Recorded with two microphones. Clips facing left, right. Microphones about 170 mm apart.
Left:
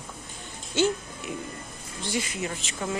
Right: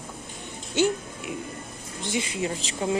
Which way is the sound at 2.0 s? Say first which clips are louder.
Right 2 dB; 20° right (ahead or behind).